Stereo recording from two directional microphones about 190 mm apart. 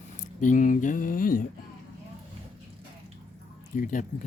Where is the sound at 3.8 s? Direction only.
45° left (ahead or behind).